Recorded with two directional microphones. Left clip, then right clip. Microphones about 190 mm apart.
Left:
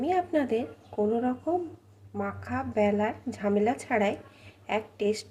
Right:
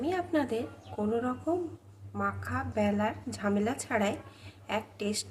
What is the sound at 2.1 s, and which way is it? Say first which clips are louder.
A woman's voice: even; 20° left (ahead or behind).